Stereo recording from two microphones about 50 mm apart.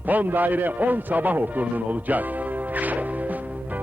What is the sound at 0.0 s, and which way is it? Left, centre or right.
A man's voice, right.